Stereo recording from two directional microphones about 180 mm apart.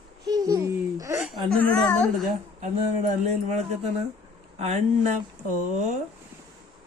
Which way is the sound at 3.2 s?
40° right (ahead or behind).